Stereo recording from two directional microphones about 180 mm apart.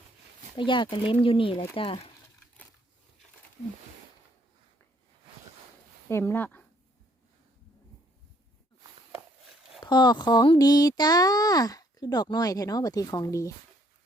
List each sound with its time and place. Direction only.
0.5 s speech: 25° left (ahead or behind)
6.1 s speech: 15° left (ahead or behind)
9.8 s speech: 25° left (ahead or behind)